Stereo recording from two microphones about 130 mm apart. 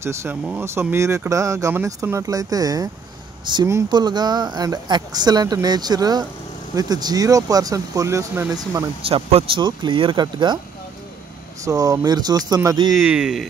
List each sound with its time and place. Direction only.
0.0 s speech: 20° right (ahead or behind)
9.6 s speech: 35° right (ahead or behind)
11.6 s speech: 30° right (ahead or behind)
12.9 s speech: 5° right (ahead or behind)